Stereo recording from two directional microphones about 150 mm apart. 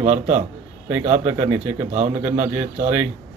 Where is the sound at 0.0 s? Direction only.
50° right (ahead or behind).